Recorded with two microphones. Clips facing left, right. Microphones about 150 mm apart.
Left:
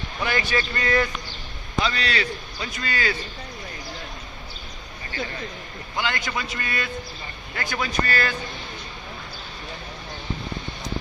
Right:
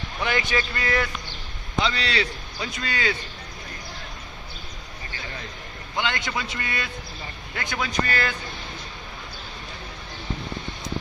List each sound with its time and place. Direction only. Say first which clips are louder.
0.2 s speech: even; 15° right (ahead or behind)
1.8 s a man's voice: even; 25° right (ahead or behind)
6.0 s a man's voice: even; 20° right (ahead or behind)